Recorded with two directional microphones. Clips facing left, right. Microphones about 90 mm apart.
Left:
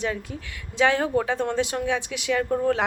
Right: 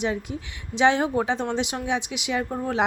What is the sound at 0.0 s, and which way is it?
A woman's voice, 20° right (ahead or behind).